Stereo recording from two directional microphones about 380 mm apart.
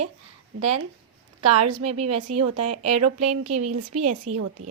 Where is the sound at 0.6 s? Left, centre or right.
Right.